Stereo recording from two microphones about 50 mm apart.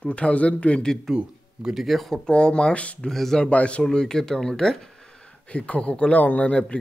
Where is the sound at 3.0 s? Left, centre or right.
Centre.